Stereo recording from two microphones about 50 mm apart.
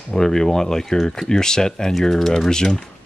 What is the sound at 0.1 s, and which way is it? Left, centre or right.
Speech, centre.